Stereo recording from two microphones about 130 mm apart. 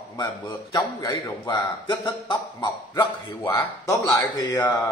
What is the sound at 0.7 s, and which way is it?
A man's voice, 25° left (ahead or behind).